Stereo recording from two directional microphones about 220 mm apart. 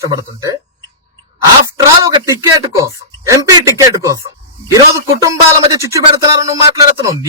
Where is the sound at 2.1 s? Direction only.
15° right (ahead or behind).